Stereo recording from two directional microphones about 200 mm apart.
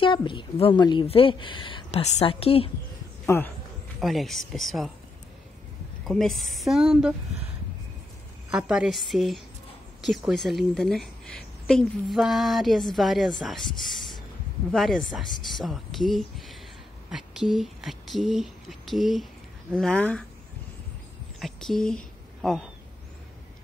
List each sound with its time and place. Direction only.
0.0 s a woman's voice: 25° left (ahead or behind)
3.3 s speech: 10° left (ahead or behind)
4.0 s a woman's voice: centre (ahead or behind)
6.0 s a woman's voice: centre (ahead or behind)
8.5 s a woman's voice: 5° right (ahead or behind)
14.7 s a woman's voice: centre (ahead or behind)
21.4 s speech: centre (ahead or behind)